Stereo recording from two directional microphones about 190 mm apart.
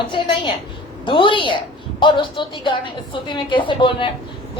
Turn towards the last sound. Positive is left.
turn(degrees=25)  # may be behind; listen again after turning